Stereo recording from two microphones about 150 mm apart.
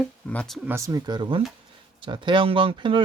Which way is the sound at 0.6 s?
15° right (ahead or behind).